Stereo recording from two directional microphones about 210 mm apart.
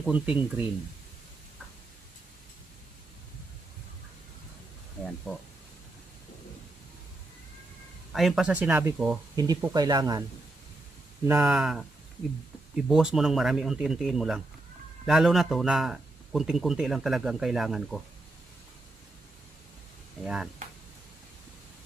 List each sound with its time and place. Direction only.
0.0 s speech: 5° right (ahead or behind)
8.1 s a man's voice: centre (ahead or behind)
9.3 s speech: 20° right (ahead or behind)
11.2 s a man's voice: 10° right (ahead or behind)